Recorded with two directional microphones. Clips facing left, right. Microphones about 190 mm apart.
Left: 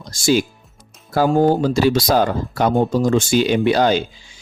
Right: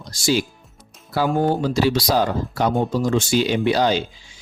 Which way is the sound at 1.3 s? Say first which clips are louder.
Left 5 dB; 40° left (ahead or behind).